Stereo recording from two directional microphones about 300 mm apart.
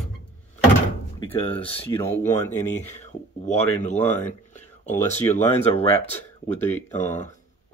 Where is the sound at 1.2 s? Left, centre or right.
Centre.